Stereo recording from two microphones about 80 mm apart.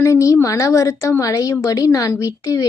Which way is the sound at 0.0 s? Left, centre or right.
Left.